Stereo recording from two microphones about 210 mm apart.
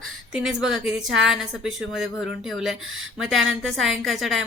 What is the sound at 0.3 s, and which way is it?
A woman's voice, centre (ahead or behind).